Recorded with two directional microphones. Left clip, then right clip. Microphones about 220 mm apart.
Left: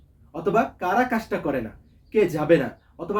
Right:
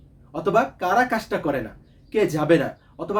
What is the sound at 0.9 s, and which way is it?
Speech, centre (ahead or behind).